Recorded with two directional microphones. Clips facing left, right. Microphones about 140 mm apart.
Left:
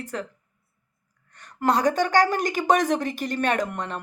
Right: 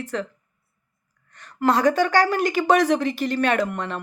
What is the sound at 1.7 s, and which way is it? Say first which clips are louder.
Speech: right 2 dB; 40° left (ahead or behind).